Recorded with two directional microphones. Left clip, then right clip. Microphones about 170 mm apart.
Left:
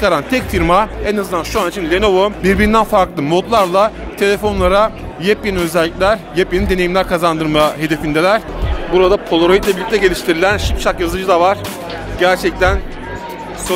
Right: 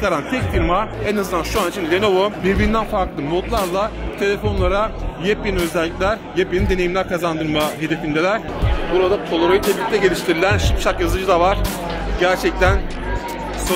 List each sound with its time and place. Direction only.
0.0 s speech: 30° left (ahead or behind)
8.9 s speech: 65° left (ahead or behind)
9.8 s speech: 45° left (ahead or behind); by 12.7 s 20° left (ahead or behind)